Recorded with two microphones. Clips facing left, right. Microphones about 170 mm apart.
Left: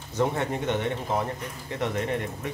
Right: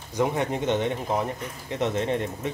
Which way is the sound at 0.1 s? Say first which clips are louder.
Right 1 dB; 15° right (ahead or behind).